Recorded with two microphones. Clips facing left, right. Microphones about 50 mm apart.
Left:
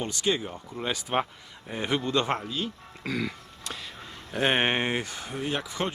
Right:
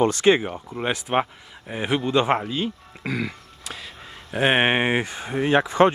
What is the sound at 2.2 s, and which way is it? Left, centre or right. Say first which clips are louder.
Speech: right 7 dB; right.